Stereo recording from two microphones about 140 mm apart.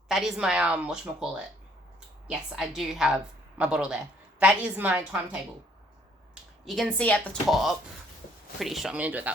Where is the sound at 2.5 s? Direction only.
Centre (ahead or behind).